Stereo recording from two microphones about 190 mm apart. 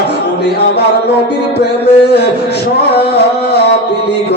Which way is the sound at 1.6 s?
60° left (ahead or behind).